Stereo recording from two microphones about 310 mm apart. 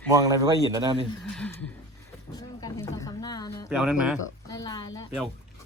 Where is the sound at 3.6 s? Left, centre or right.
Centre.